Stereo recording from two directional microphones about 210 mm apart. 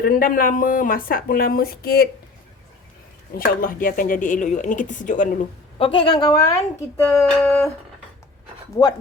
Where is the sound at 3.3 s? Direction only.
45° left (ahead or behind).